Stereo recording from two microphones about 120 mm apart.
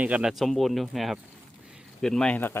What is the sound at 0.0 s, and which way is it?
Speech, 10° right (ahead or behind).